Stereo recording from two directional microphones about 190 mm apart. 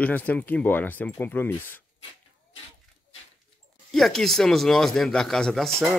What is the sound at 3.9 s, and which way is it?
Speech, centre (ahead or behind).